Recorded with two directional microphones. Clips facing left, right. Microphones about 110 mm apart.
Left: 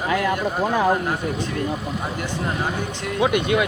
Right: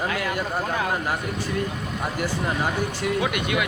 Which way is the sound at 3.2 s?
25° left (ahead or behind).